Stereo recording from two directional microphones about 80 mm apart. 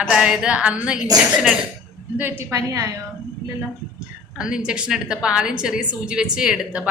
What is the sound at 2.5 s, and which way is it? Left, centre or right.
Speech, right.